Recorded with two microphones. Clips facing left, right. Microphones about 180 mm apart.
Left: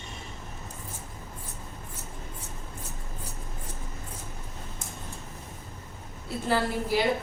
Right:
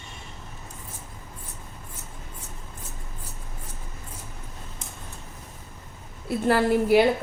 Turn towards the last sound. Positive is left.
turn(degrees=-60)  # may be behind; listen again after turning